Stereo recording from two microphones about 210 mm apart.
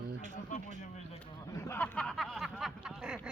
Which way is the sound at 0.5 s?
35° left (ahead or behind).